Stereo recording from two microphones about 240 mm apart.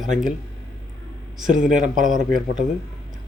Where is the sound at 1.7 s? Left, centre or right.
Right.